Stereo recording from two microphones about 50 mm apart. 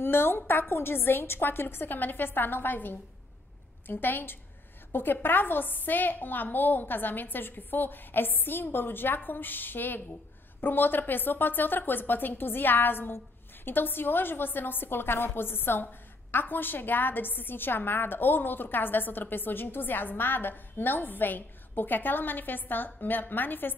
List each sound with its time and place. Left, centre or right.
0.0 s a woman's voice: left